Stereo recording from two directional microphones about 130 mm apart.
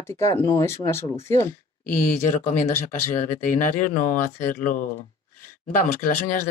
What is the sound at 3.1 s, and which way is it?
Speech, 85° left.